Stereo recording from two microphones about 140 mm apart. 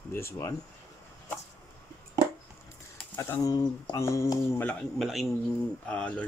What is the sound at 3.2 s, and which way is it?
Speech, 25° left (ahead or behind).